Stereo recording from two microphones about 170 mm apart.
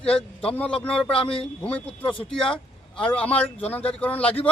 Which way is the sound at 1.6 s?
10° left (ahead or behind).